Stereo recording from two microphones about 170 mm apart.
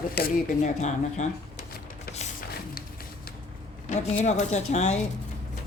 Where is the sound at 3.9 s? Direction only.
45° left (ahead or behind).